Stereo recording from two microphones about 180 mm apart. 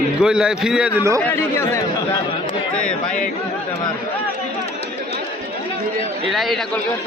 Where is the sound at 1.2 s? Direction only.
10° left (ahead or behind).